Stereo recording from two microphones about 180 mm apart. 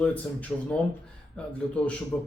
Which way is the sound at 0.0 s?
10° left (ahead or behind).